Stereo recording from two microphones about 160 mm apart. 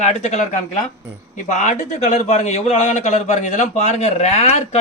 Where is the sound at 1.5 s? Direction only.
45° left (ahead or behind).